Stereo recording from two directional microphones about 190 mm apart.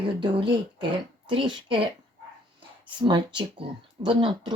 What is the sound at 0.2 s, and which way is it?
Speech, 25° right (ahead or behind).